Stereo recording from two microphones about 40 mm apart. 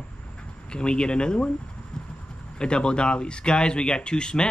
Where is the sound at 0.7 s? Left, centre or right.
Left.